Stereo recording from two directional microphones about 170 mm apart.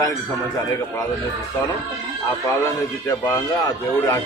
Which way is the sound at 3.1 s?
15° left (ahead or behind).